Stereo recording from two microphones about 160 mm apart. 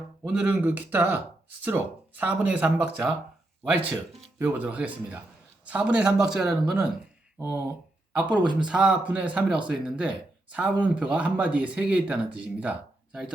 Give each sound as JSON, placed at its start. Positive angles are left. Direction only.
{"t": 0.3, "sound": "speech", "side_deg": -10}
{"t": 4.4, "sound": "a man's voice", "side_deg": -10}
{"t": 7.3, "sound": "speech", "side_deg": -15}
{"t": 8.1, "sound": "a man's voice", "side_deg": -5}